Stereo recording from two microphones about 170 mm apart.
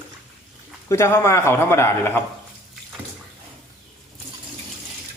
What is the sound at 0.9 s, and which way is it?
A man's voice, 15° left (ahead or behind).